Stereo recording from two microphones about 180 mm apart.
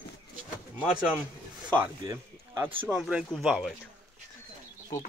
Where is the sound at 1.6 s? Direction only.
10° right (ahead or behind).